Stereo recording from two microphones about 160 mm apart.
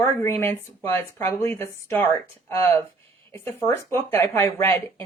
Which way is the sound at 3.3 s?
15° left (ahead or behind).